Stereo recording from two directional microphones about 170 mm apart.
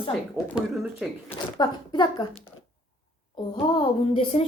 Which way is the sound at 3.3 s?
25° left (ahead or behind).